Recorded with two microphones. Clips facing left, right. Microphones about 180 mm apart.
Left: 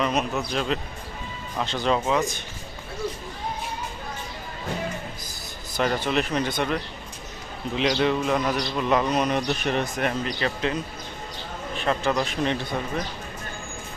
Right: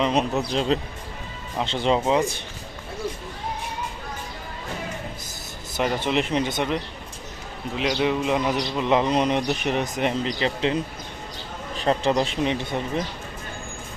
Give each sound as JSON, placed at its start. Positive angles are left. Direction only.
{"t": 0.0, "sound": "speech", "side_deg": -30}
{"t": 5.7, "sound": "speech", "side_deg": -15}
{"t": 7.8, "sound": "a man's voice", "side_deg": -5}
{"t": 11.9, "sound": "speech", "side_deg": -30}
{"t": 12.4, "sound": "a man's voice", "side_deg": -15}